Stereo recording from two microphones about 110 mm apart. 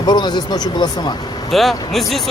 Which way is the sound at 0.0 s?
40° left (ahead or behind).